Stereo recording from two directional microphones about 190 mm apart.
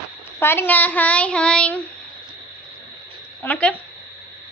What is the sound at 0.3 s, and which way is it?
A child's voice, 10° left (ahead or behind).